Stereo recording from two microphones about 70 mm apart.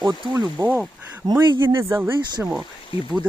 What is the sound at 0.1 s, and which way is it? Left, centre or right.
Speech, right.